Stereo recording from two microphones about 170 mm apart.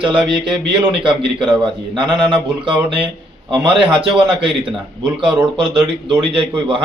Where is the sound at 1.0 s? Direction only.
30° right (ahead or behind).